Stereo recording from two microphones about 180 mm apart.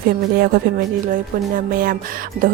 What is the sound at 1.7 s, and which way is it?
Speech, 55° right (ahead or behind).